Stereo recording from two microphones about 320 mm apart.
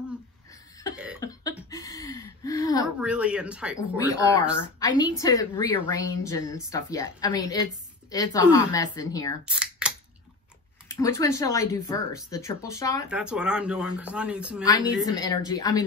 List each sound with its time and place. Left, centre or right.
1.2 s a sound: centre
3.0 s speech: centre
4.1 s a woman's voice: centre
9.5 s a sound: centre
11.0 s a woman's voice: centre
13.1 s speech: centre
15.0 s a woman's voice: centre